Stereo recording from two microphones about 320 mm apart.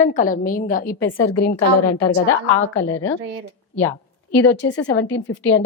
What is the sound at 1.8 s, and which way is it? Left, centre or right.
Speech, left.